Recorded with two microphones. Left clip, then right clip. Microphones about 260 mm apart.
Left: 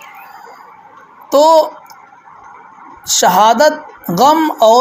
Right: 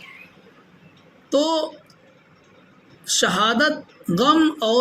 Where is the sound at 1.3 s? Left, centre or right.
Centre.